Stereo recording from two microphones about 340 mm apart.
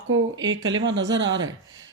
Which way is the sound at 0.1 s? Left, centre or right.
Right.